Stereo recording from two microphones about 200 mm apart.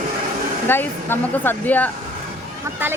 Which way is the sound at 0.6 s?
10° left (ahead or behind).